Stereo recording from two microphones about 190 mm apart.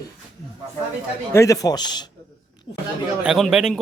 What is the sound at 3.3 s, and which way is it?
Speech, centre (ahead or behind).